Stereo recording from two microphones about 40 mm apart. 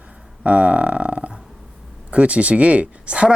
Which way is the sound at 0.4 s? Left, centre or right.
Right.